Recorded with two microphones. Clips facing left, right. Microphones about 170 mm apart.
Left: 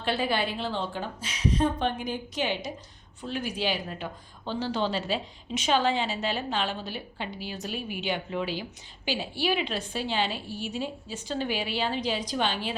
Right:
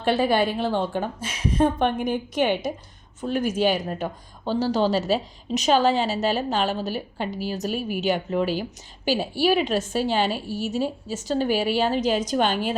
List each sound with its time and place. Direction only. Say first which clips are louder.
0.0 s a woman's voice: right 7 dB; 45° right (ahead or behind)